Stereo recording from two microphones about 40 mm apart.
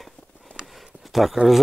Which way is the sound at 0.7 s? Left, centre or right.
Centre.